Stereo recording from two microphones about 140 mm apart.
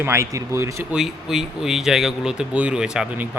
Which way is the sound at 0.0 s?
20° right (ahead or behind).